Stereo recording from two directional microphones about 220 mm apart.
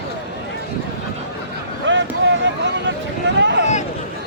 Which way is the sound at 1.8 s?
55° right (ahead or behind).